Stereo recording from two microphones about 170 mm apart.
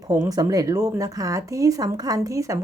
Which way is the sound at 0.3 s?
20° right (ahead or behind).